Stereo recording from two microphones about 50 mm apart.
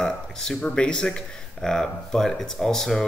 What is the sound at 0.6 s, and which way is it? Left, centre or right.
Speech, left.